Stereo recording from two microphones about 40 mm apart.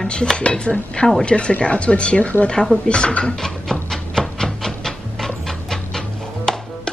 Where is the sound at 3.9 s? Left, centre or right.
Centre.